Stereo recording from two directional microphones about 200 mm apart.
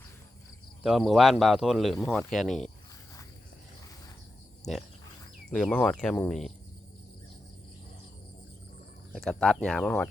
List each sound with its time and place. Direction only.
0.8 s speech: centre (ahead or behind)
5.5 s speech: 5° left (ahead or behind)
9.1 s speech: centre (ahead or behind)